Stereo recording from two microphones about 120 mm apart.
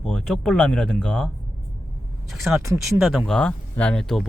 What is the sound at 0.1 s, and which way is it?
Speech, 5° left (ahead or behind).